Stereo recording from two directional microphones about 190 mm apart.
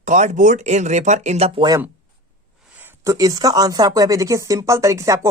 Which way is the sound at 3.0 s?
15° right (ahead or behind).